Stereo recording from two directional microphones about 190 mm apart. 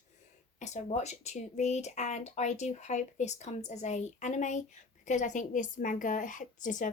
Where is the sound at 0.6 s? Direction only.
35° left (ahead or behind).